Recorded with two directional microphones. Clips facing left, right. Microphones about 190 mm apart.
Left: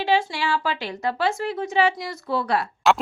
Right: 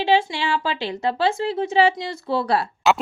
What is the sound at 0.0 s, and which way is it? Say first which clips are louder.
A woman's voice: right 2 dB; 25° right (ahead or behind).